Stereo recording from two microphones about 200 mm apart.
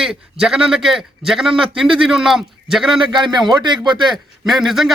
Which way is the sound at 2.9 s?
25° right (ahead or behind).